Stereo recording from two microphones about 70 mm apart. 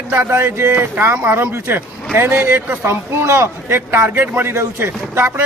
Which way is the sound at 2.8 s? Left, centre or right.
Right.